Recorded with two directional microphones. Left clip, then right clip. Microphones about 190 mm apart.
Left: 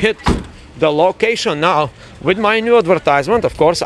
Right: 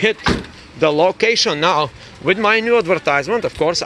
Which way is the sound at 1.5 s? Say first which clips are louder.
Left 2 dB; 15° left (ahead or behind).